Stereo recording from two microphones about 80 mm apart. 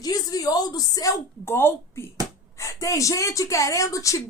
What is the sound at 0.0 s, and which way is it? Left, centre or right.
A woman's voice, left.